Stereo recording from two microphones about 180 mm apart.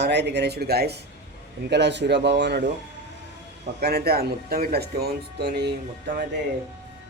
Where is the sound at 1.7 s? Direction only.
75° right (ahead or behind).